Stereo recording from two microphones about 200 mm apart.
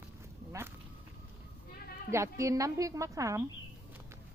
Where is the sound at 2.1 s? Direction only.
15° right (ahead or behind).